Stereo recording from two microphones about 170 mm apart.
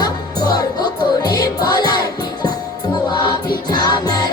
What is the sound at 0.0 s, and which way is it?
Music, 25° left (ahead or behind).